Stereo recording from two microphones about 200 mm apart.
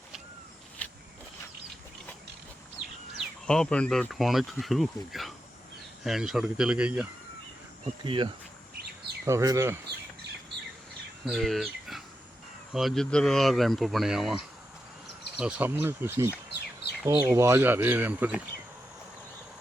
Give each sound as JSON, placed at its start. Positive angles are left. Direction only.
{"t": 3.2, "sound": "speech", "side_deg": 5}
{"t": 8.0, "sound": "speech", "side_deg": -25}
{"t": 11.3, "sound": "speech", "side_deg": 0}